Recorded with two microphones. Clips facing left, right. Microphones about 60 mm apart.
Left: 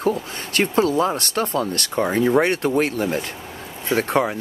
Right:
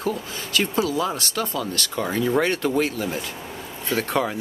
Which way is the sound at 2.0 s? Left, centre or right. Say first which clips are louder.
Left 4 dB; left.